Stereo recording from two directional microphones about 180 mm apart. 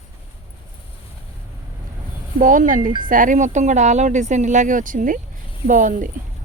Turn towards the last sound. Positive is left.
turn(degrees=-45)  # may be behind; listen again after turning